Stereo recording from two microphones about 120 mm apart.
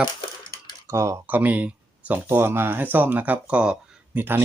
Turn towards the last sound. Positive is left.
turn(degrees=-15)  # may be behind; listen again after turning